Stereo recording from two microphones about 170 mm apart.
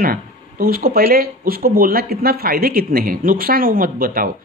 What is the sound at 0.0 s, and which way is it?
Speech, 60° right (ahead or behind).